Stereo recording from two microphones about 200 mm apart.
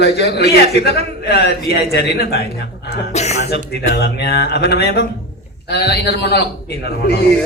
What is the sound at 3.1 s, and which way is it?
Speech, 35° left (ahead or behind).